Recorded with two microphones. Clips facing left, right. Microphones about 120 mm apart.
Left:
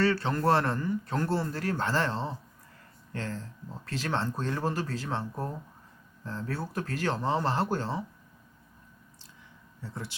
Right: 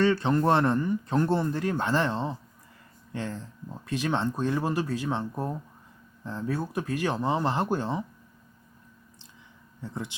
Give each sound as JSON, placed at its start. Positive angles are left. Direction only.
{"t": 0.0, "sound": "a man's voice", "side_deg": -20}
{"t": 9.8, "sound": "a man's voice", "side_deg": -20}